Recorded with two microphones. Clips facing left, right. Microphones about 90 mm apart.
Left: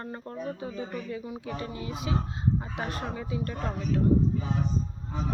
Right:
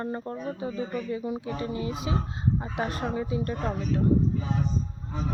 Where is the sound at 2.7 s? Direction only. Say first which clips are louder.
Right 4 dB; 5° right (ahead or behind).